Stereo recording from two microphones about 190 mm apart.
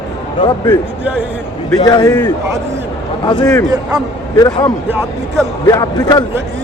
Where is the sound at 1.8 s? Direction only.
20° left (ahead or behind).